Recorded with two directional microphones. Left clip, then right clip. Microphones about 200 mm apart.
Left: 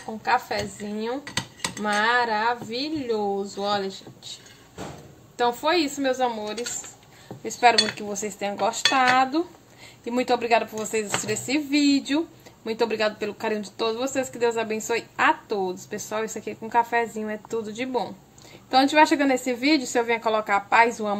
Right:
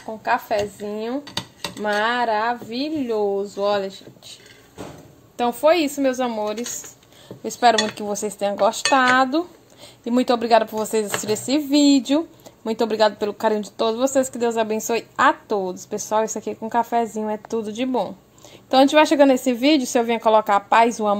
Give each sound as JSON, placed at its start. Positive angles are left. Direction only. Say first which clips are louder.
{"t": 0.2, "sound": "speech", "louder": "right 3 dB", "side_deg": -30}
{"t": 5.4, "sound": "a woman's voice", "louder": "right 5 dB", "side_deg": -35}
{"t": 10.0, "sound": "a woman's voice", "louder": "right 3 dB", "side_deg": -35}